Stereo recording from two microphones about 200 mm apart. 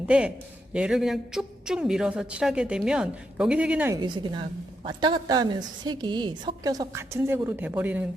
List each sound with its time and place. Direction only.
0.1 s a man's voice: 5° right (ahead or behind)